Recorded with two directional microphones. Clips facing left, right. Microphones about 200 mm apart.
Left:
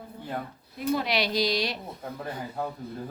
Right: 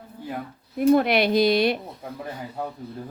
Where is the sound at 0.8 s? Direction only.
55° right (ahead or behind).